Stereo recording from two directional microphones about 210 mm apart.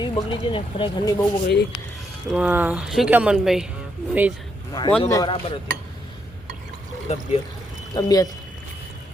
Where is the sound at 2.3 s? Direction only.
5° right (ahead or behind).